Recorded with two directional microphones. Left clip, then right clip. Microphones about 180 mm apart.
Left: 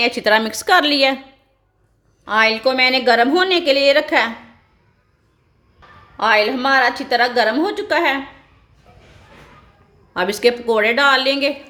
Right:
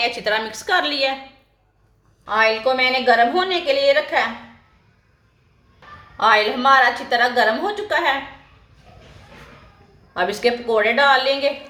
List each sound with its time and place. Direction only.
0.0 s a woman's voice: 55° left (ahead or behind)
2.2 s a woman's voice: 55° left (ahead or behind)
6.1 s a woman's voice: 50° left (ahead or behind)
10.2 s a woman's voice: 55° left (ahead or behind)